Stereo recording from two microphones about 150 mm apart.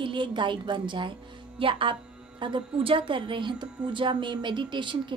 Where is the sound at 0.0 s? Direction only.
35° right (ahead or behind).